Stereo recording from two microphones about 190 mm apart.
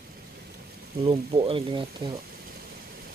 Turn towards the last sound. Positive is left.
turn(degrees=-25)  # may be behind; listen again after turning